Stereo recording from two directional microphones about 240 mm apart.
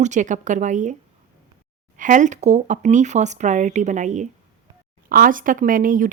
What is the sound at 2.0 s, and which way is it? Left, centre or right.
Speech, right.